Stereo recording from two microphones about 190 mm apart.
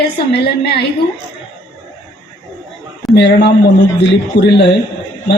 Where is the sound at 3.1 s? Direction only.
65° left (ahead or behind).